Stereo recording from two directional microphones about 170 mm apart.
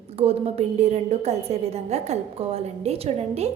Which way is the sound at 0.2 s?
35° right (ahead or behind).